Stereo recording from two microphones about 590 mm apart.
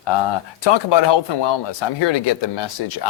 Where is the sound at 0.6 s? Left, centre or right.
Left.